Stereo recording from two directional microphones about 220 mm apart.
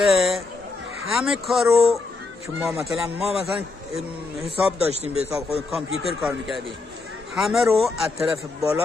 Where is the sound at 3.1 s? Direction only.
25° right (ahead or behind).